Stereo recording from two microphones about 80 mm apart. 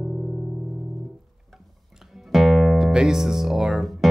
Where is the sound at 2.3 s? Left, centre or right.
Centre.